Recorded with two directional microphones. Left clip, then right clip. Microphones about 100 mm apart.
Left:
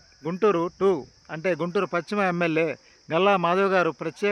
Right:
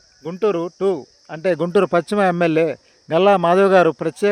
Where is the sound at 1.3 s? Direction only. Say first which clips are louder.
Right 8 dB; 55° right (ahead or behind); by 2.3 s 85° right.